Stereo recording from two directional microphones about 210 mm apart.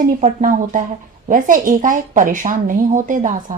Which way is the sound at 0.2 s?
40° right (ahead or behind).